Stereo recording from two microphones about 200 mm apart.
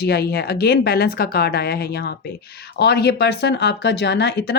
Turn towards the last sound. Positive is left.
turn(degrees=55)  # may be behind; listen again after turning